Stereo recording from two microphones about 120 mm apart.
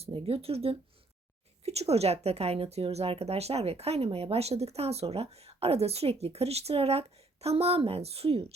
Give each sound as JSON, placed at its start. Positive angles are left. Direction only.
{"t": 0.0, "sound": "a woman's voice", "side_deg": -50}